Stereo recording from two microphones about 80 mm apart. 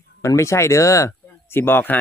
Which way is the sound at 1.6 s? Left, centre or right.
Left.